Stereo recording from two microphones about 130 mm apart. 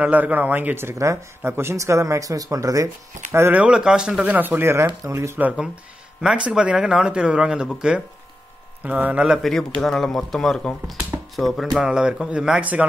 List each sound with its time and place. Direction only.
0.0 s speech: 10° right (ahead or behind)
6.2 s a man's voice: 5° right (ahead or behind)